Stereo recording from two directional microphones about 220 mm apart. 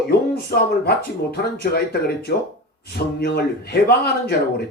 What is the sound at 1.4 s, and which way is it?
A man's voice, 45° left (ahead or behind).